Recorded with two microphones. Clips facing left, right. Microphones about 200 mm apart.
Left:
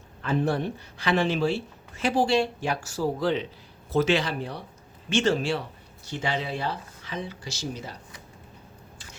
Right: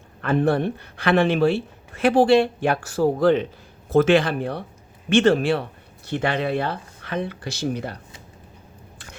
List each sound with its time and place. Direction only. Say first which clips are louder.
0.2 s speech: right 6 dB; 60° right (ahead or behind)